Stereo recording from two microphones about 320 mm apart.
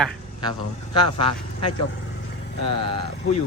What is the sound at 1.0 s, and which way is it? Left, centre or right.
Speech, centre.